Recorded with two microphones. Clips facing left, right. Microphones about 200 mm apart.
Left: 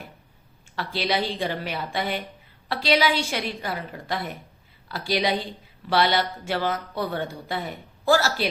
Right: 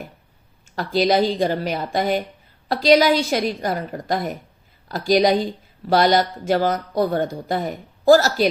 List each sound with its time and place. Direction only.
0.8 s a woman's voice: 45° right (ahead or behind)